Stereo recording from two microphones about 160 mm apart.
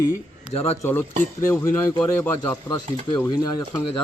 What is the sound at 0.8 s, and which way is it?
Speech, 10° left (ahead or behind).